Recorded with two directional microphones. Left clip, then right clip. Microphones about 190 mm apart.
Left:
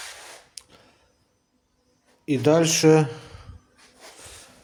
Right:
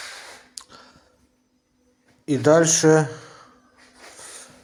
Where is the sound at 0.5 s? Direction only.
Centre (ahead or behind).